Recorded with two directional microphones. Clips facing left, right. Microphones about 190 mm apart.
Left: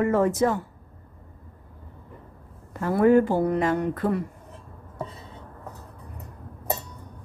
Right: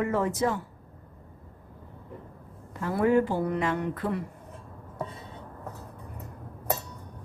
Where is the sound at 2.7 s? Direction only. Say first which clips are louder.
Left 5 dB; 50° left (ahead or behind).